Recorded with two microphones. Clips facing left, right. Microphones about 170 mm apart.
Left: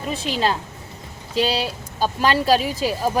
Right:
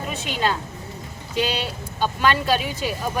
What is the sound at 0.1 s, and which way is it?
Speech, 30° left (ahead or behind).